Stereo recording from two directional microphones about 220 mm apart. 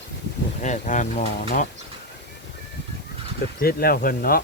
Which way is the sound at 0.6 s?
35° left (ahead or behind).